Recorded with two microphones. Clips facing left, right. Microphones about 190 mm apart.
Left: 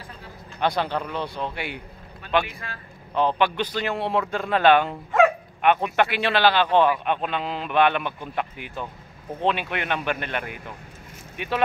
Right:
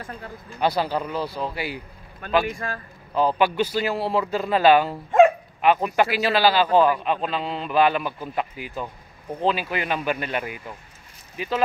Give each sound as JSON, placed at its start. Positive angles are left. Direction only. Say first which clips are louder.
{"t": 0.6, "sound": "a man's voice", "louder": "right 1 dB", "side_deg": -5}
{"t": 2.4, "sound": "a man's voice", "louder": "right 9 dB", "side_deg": -45}
{"t": 3.2, "sound": "a man's voice", "louder": "right 2 dB", "side_deg": -5}